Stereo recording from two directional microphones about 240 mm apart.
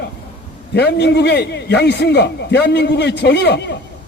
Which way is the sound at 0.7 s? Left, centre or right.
Left.